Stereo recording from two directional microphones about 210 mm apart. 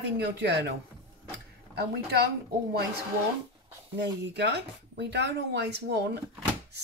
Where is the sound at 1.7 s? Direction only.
50° right (ahead or behind).